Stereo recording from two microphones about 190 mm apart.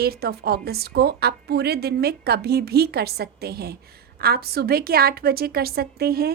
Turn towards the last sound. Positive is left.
turn(degrees=-55)  # may be behind; listen again after turning